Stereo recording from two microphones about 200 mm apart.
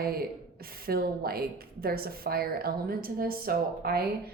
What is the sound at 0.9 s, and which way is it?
A woman's voice, 50° right (ahead or behind).